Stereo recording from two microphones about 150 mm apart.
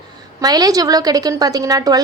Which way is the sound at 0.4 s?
25° right (ahead or behind).